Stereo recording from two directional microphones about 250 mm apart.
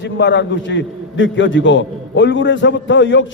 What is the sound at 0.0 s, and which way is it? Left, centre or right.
A man's voice, left.